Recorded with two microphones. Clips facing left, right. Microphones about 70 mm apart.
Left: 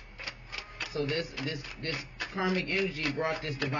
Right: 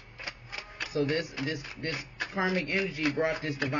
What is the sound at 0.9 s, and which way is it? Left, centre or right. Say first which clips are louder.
Speech: right 3 dB; centre.